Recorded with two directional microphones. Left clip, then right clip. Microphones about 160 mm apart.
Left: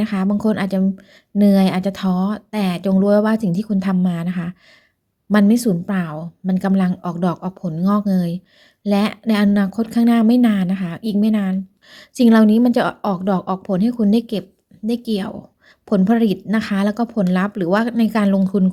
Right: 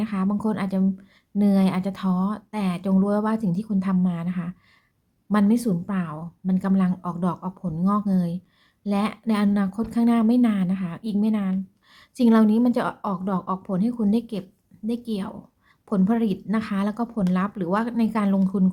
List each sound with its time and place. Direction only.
0.0 s speech: 30° left (ahead or behind)